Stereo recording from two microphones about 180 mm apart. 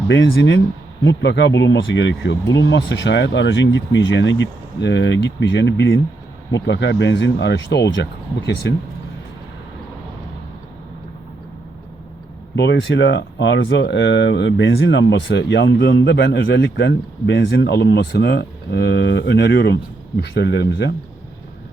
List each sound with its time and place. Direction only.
0.1 s speech: 75° left (ahead or behind)
12.5 s speech: 70° left (ahead or behind)